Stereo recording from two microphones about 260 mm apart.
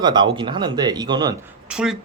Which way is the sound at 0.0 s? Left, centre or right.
Centre.